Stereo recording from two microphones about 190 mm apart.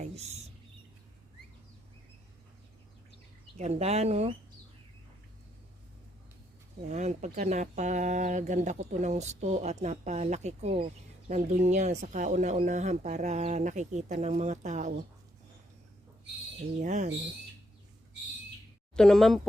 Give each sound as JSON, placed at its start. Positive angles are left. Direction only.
{"t": 3.6, "sound": "speech", "side_deg": -35}
{"t": 6.8, "sound": "speech", "side_deg": -40}
{"t": 16.8, "sound": "speech", "side_deg": -40}
{"t": 18.9, "sound": "speech", "side_deg": 5}